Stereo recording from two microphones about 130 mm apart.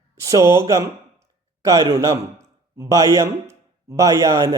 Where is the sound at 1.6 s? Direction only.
25° right (ahead or behind).